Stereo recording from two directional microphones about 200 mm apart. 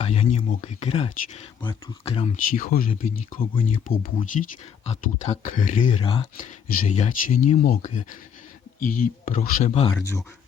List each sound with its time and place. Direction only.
0.0 s speech: 35° left (ahead or behind)
4.9 s speech: 35° left (ahead or behind)
6.3 s speech: 40° left (ahead or behind)
9.9 s speech: 15° left (ahead or behind)